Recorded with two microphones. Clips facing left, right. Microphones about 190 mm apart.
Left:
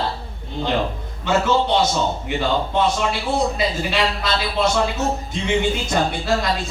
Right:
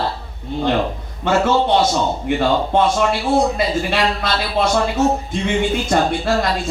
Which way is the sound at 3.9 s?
50° right (ahead or behind).